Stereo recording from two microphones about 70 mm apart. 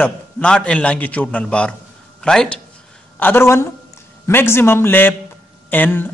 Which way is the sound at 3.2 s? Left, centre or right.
Left.